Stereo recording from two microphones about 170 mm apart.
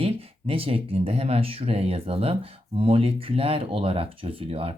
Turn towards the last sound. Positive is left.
turn(degrees=-35)  # may be behind; listen again after turning